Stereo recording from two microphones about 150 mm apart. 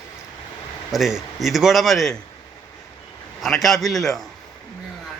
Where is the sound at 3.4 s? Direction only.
Centre (ahead or behind).